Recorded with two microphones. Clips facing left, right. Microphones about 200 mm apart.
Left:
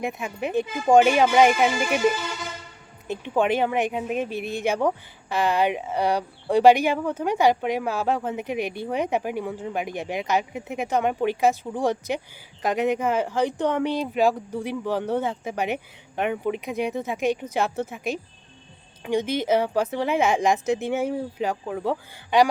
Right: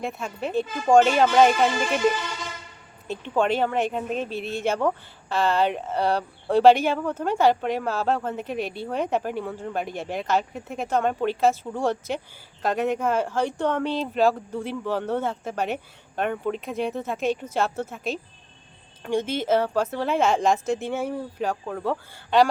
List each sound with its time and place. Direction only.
0.0 s a woman's voice: 15° left (ahead or behind)
3.1 s a woman's voice: 15° left (ahead or behind)